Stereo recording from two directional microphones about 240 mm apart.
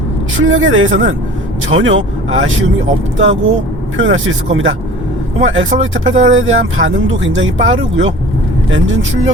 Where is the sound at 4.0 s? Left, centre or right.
Right.